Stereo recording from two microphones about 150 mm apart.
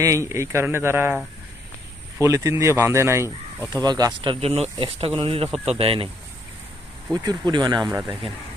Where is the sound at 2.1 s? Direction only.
20° right (ahead or behind); by 6.0 s 40° right (ahead or behind).